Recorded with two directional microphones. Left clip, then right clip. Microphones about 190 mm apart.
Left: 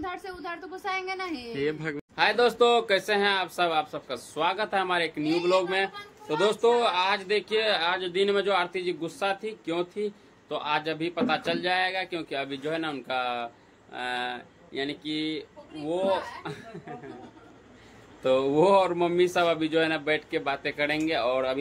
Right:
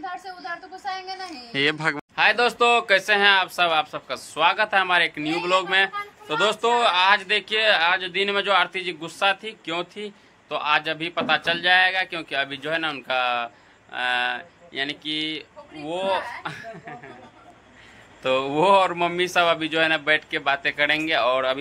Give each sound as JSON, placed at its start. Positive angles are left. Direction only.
{"t": 0.2, "sound": "speech", "side_deg": 30}
{"t": 2.1, "sound": "speech", "side_deg": 5}
{"t": 18.2, "sound": "speech", "side_deg": 0}